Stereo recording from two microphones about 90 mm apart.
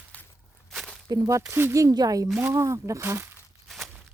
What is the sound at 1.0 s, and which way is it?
Speech, 45° right (ahead or behind).